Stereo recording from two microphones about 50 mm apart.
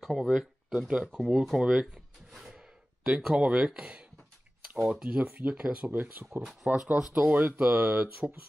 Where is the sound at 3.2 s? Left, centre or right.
Right.